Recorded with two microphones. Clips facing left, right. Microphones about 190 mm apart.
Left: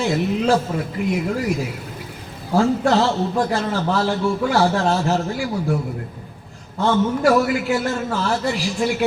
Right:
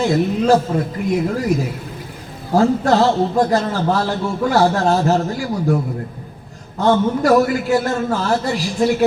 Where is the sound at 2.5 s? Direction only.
40° right (ahead or behind).